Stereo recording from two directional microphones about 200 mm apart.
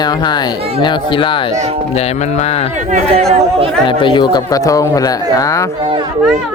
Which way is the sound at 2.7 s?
40° right (ahead or behind).